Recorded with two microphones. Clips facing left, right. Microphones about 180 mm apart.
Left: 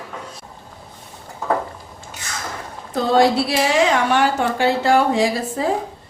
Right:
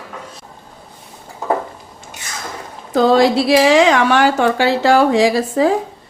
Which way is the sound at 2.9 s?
90° right.